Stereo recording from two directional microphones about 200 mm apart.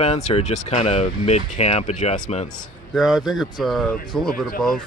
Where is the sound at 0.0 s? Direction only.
30° left (ahead or behind).